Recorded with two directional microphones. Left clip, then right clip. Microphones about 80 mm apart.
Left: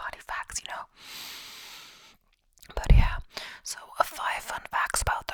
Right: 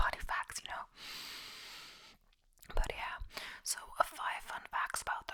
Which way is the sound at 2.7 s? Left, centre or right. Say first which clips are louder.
Left 8 dB; left.